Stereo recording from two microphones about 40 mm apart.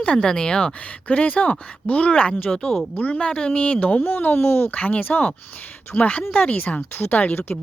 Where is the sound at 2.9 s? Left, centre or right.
Left.